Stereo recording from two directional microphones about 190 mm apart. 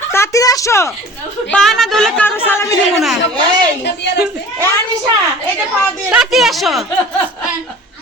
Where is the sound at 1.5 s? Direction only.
Centre (ahead or behind).